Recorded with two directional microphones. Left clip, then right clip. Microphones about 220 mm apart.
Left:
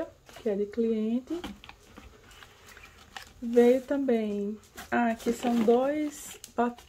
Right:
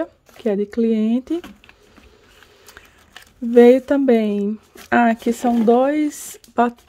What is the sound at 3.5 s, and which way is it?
Speech, 50° right (ahead or behind).